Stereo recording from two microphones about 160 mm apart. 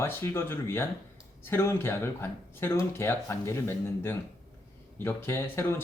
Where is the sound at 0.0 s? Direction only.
15° left (ahead or behind).